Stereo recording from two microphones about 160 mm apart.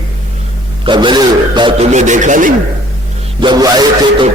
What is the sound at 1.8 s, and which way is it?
Speech, 50° right (ahead or behind).